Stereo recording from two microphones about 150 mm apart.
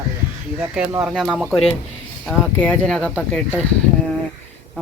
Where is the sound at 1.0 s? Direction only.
Centre (ahead or behind).